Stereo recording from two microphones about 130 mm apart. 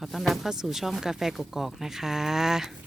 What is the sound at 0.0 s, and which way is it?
Speech, centre (ahead or behind).